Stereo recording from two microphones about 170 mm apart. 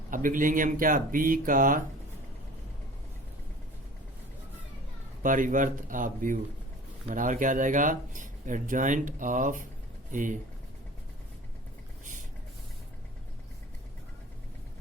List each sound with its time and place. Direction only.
0.1 s speech: 50° right (ahead or behind)
5.2 s speech: 50° right (ahead or behind)